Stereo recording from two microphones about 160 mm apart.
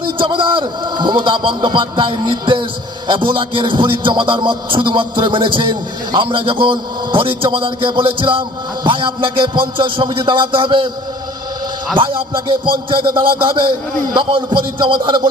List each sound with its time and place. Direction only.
0.0 s music: 30° right (ahead or behind)
11.9 s music: 35° right (ahead or behind)
15.0 s speech: 25° right (ahead or behind)